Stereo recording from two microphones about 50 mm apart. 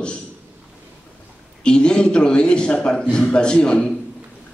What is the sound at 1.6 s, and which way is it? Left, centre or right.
A man's voice, centre.